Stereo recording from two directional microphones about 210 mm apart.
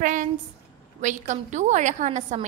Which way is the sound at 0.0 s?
40° right (ahead or behind).